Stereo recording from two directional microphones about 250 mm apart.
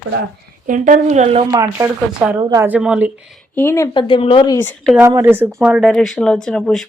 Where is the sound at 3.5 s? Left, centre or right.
Centre.